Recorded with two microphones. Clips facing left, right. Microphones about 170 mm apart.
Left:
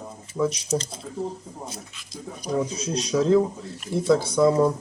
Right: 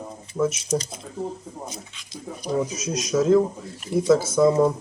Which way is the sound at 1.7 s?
Centre (ahead or behind).